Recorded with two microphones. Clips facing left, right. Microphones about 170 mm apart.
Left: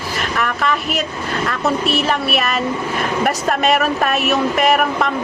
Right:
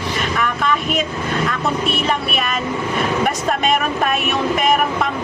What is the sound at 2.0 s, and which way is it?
Speech, 5° left (ahead or behind).